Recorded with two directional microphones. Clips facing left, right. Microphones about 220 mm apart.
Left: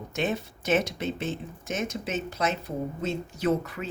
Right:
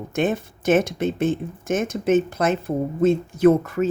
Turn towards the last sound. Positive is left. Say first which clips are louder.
# right 10 dB
turn(degrees=-50)  # may be behind; listen again after turning